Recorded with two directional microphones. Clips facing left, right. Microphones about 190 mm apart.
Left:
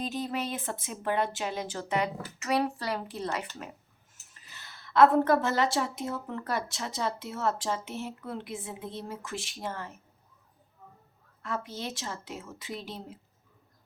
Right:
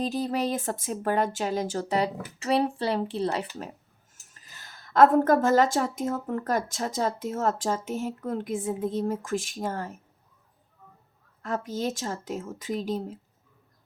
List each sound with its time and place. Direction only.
0.0 s speech: 35° right (ahead or behind)
4.1 s speech: 45° right (ahead or behind)
11.4 s speech: 45° right (ahead or behind)